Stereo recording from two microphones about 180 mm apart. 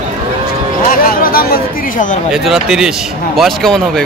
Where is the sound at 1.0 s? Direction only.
55° left (ahead or behind).